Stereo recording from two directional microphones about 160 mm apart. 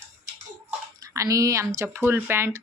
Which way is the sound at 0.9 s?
20° right (ahead or behind).